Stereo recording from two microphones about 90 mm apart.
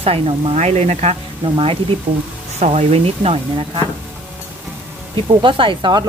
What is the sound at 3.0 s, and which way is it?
Speech, 85° right.